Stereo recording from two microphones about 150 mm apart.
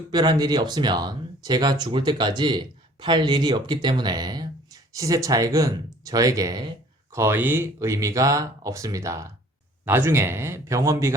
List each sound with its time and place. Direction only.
0.1 s speech: 25° right (ahead or behind)